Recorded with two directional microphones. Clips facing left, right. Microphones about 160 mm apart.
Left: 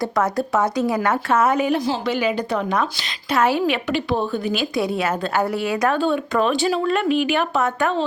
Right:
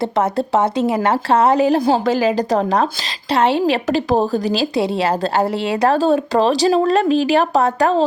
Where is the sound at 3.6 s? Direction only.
40° right (ahead or behind).